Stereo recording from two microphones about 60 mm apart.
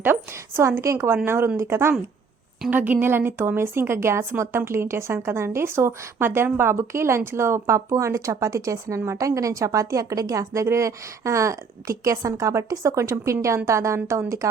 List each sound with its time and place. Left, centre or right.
0.9 s a woman's voice: right
2.6 s a woman's voice: right